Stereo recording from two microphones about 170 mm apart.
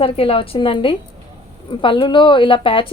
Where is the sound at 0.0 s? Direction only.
35° left (ahead or behind).